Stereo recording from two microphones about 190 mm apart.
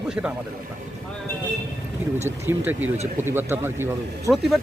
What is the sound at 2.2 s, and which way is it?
Speech, 15° right (ahead or behind).